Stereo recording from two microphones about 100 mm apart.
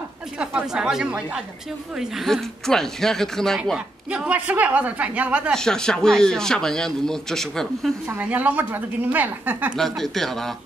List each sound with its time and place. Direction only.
0.4 s speech: 10° right (ahead or behind)
3.7 s speech: 10° right (ahead or behind)
5.5 s speech: 5° left (ahead or behind)
8.1 s speech: 15° right (ahead or behind)
9.8 s speech: 5° left (ahead or behind)